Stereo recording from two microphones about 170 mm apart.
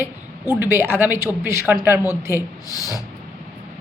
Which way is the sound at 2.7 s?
20° left (ahead or behind).